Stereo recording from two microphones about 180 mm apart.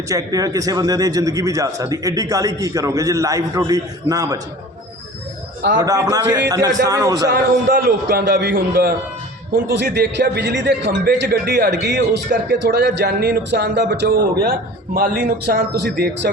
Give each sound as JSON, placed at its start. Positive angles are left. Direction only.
{"t": 0.1, "sound": "speech", "side_deg": -20}
{"t": 5.8, "sound": "speech", "side_deg": -20}
{"t": 7.3, "sound": "a man's voice", "side_deg": -65}